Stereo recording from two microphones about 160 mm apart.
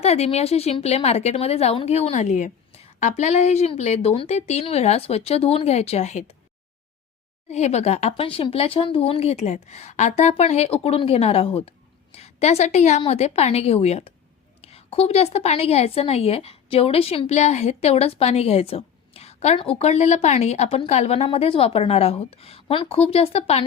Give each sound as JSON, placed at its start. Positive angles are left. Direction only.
{"t": 0.0, "sound": "a woman's voice", "side_deg": 40}
{"t": 7.5, "sound": "a woman's voice", "side_deg": 45}